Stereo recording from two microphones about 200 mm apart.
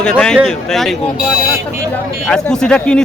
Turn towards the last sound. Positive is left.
turn(degrees=5)  # may be behind; listen again after turning